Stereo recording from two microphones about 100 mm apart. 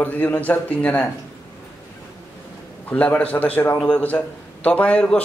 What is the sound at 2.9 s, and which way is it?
A man's voice, 15° left (ahead or behind).